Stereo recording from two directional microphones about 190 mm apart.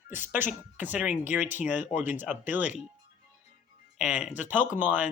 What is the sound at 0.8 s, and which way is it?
Speech, 10° right (ahead or behind).